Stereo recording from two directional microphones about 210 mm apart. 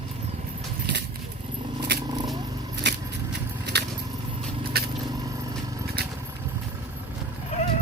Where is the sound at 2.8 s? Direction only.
55° right (ahead or behind).